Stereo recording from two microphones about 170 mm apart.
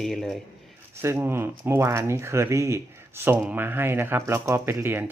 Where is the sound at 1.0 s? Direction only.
15° right (ahead or behind).